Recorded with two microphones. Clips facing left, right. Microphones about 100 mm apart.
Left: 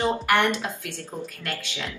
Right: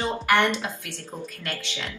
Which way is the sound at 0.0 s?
15° left (ahead or behind).